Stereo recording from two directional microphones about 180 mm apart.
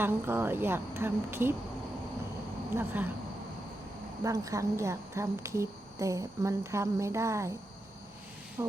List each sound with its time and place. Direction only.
0.0 s speech: 10° right (ahead or behind)
2.7 s speech: 10° right (ahead or behind)
4.2 s speech: 20° right (ahead or behind)
8.6 s speech: 10° right (ahead or behind)